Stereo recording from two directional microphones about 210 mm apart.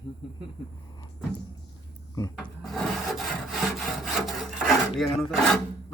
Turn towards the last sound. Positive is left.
turn(degrees=0)  # may be behind; listen again after turning